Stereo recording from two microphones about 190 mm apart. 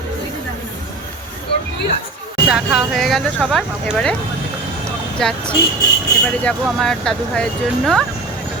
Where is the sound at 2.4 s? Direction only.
5° right (ahead or behind).